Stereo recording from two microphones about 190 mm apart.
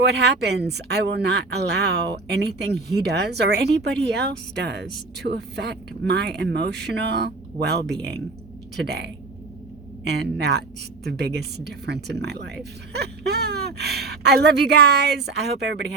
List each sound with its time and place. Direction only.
0.0 s speech: 60° right (ahead or behind)
10.0 s speech: 60° right (ahead or behind)